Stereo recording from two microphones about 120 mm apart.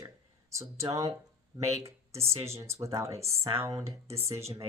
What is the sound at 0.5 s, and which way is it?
Speech, 25° right (ahead or behind).